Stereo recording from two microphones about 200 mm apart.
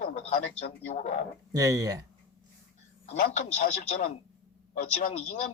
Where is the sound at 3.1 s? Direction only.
40° left (ahead or behind).